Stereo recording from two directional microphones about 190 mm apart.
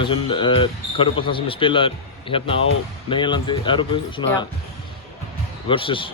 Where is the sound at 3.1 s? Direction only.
25° left (ahead or behind).